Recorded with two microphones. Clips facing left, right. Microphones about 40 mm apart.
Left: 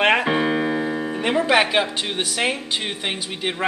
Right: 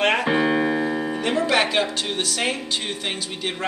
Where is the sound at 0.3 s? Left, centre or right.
Centre.